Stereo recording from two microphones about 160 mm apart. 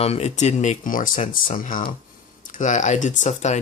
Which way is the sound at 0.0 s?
40° left (ahead or behind).